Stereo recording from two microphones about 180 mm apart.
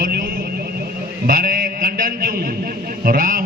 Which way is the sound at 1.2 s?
50° right (ahead or behind).